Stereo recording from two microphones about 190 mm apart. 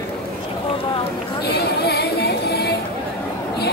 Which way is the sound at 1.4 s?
55° left (ahead or behind).